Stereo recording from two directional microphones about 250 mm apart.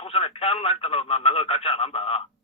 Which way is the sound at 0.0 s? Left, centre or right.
Left.